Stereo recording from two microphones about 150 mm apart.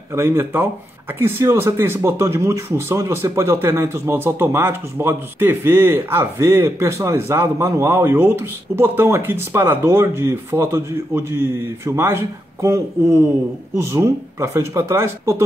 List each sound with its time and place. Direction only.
0.1 s speech: 15° right (ahead or behind)